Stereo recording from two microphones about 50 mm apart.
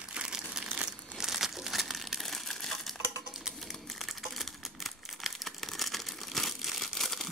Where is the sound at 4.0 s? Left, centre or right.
Centre.